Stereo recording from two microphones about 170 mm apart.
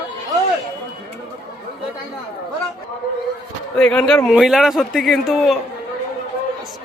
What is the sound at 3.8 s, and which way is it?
A man's voice, 5° left (ahead or behind).